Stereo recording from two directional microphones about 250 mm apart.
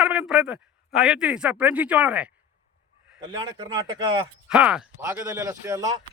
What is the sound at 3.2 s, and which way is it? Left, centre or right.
Speech, centre.